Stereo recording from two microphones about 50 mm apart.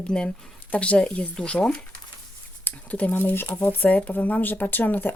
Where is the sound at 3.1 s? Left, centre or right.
Left.